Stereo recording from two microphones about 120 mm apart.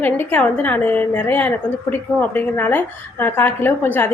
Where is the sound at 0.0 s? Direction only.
15° left (ahead or behind).